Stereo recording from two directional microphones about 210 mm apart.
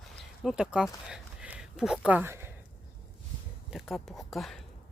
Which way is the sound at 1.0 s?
5° right (ahead or behind).